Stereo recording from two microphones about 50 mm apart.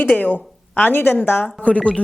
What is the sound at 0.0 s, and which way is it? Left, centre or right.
A woman's voice, left.